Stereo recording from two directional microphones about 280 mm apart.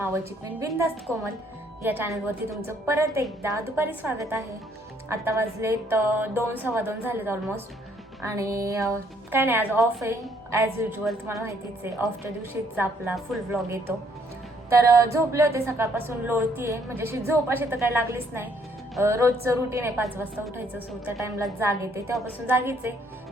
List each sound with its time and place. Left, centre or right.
0.0 s a woman's voice: centre
1.1 s a woman's voice: centre
1.8 s a woman's voice: centre